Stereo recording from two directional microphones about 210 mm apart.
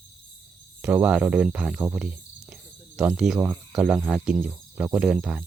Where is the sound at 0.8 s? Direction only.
5° right (ahead or behind).